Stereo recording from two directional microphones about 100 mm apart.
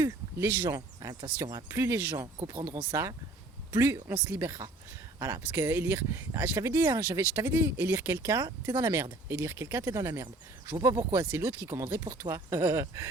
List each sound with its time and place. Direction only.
0.0 s speech: 30° right (ahead or behind)